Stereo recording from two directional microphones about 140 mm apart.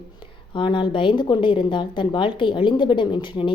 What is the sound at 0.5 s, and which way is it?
A woman's voice, 35° left (ahead or behind).